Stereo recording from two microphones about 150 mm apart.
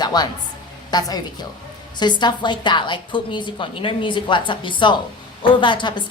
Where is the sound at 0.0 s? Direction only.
25° left (ahead or behind).